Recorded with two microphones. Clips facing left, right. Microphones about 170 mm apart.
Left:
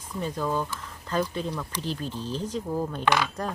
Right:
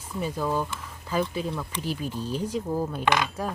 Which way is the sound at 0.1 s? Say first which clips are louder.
Right 1 dB; 10° right (ahead or behind).